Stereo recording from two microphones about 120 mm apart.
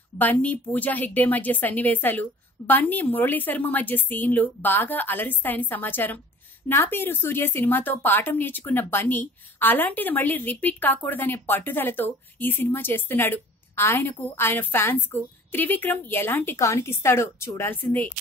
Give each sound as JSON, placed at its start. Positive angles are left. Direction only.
{"t": 0.2, "sound": "a woman's voice", "side_deg": 15}